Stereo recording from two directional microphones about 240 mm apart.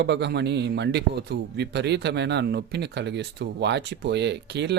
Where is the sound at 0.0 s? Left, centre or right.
Right.